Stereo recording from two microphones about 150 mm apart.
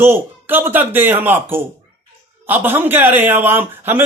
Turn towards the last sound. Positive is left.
turn(degrees=-15)  # may be behind; listen again after turning